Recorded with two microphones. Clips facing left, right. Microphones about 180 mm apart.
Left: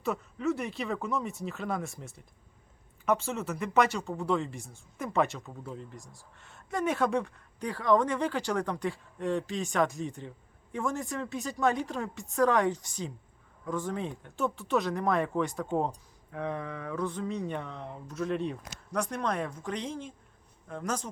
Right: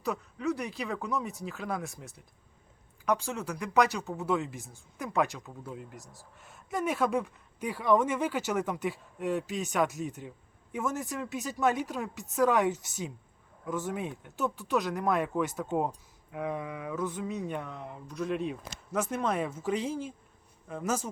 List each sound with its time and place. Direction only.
0.0 s speech: centre (ahead or behind)